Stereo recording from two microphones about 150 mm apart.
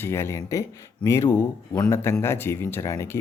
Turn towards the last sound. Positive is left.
turn(degrees=20)  # may be behind; listen again after turning